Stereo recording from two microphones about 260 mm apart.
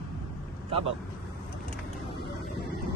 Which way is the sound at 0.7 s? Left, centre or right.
Right.